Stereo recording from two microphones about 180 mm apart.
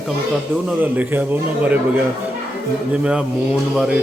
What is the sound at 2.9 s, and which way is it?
Speech, 5° right (ahead or behind).